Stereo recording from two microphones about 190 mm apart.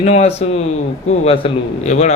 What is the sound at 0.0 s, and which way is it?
A man's voice, 35° left (ahead or behind).